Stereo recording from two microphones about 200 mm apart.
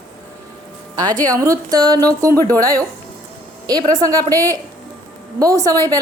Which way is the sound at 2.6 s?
15° right (ahead or behind).